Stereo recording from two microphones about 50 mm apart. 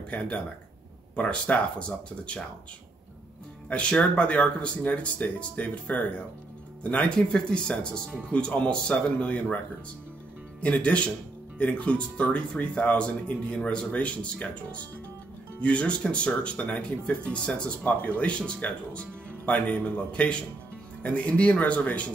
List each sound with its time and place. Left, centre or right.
0.1 s speech: left
3.6 s speech: left
10.6 s speech: left
20.1 s speech: left